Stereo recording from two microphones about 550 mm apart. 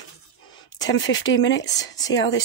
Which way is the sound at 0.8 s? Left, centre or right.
Centre.